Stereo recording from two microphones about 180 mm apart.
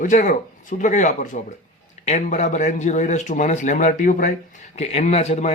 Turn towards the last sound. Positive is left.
turn(degrees=35)  # may be behind; listen again after turning